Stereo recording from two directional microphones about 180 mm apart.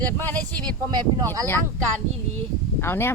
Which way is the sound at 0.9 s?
20° right (ahead or behind).